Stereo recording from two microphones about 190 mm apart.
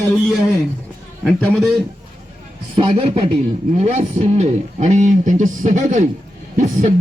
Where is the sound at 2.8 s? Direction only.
30° right (ahead or behind).